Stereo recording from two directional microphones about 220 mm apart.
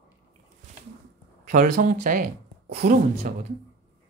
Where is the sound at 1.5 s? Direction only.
40° right (ahead or behind).